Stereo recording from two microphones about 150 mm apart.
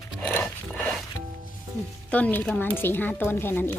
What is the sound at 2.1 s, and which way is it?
Speech, 10° left (ahead or behind).